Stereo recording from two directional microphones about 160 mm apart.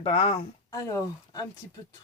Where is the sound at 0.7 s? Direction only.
20° left (ahead or behind).